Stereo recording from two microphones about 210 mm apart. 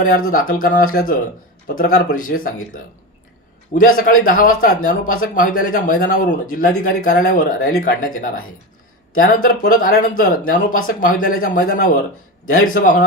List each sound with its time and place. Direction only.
0.0 s speech: 40° left (ahead or behind)
3.8 s speech: 40° left (ahead or behind)
9.4 s speech: 40° left (ahead or behind)